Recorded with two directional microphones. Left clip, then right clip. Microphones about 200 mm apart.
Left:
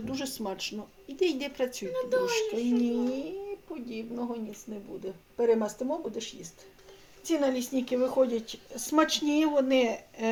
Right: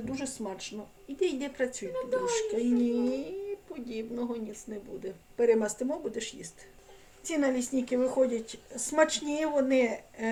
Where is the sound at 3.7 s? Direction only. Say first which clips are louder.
Right 1 dB; 15° left (ahead or behind).